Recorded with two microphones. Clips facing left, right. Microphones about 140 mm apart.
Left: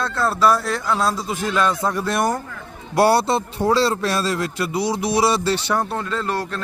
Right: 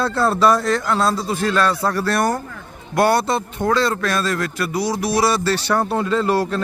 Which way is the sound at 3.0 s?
30° left (ahead or behind).